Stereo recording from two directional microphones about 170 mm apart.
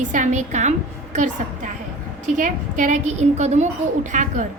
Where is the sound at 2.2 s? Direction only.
45° right (ahead or behind).